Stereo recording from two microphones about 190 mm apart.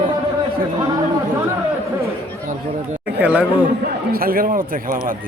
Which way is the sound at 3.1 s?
10° right (ahead or behind).